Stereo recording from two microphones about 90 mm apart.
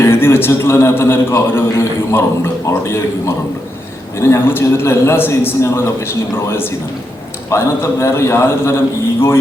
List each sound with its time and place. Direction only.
0.0 s a man's voice: 25° left (ahead or behind)